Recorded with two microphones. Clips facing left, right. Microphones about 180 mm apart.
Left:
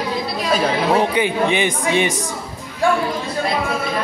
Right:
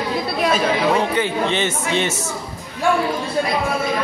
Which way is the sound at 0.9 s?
15° left (ahead or behind).